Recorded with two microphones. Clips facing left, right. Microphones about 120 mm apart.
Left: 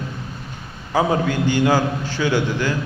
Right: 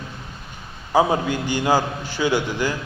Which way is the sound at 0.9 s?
15° right (ahead or behind).